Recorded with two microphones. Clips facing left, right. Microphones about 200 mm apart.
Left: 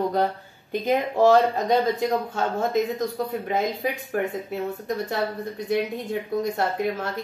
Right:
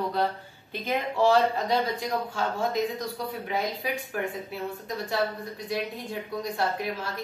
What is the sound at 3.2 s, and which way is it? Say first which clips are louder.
Speech: left 6 dB; 50° left (ahead or behind).